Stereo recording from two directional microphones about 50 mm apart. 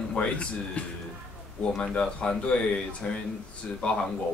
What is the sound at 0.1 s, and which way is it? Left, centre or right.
Speech, left.